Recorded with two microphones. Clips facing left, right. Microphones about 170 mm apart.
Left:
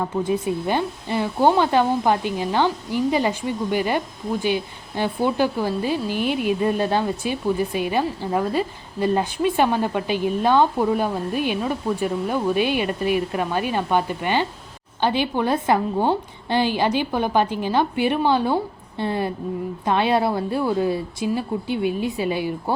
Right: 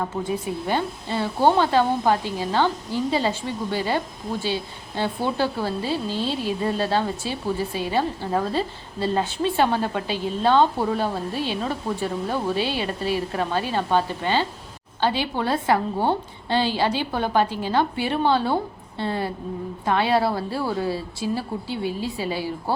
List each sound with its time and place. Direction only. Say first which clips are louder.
0.4 s a woman's voice: left 2 dB; 20° left (ahead or behind)